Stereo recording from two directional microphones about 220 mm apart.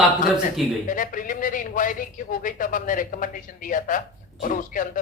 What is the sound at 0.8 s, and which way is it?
A man's voice, 35° left (ahead or behind).